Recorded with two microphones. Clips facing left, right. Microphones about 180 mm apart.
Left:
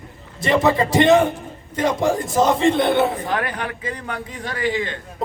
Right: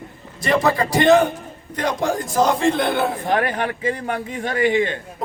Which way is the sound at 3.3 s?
35° right (ahead or behind).